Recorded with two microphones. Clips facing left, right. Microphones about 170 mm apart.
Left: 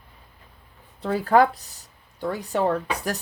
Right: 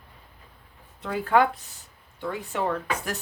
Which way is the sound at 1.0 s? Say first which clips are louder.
Left 3 dB; 35° left (ahead or behind).